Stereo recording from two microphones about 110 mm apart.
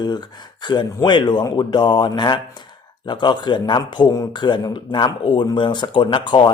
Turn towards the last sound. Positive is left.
turn(degrees=45)  # may be behind; listen again after turning